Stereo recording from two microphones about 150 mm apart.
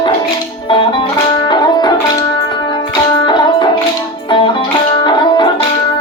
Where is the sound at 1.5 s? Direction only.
30° left (ahead or behind).